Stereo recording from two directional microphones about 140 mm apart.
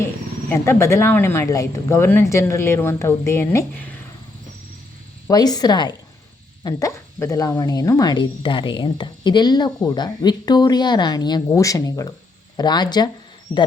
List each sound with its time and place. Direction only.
0.0 s speech: 20° left (ahead or behind)
5.3 s speech: 30° left (ahead or behind)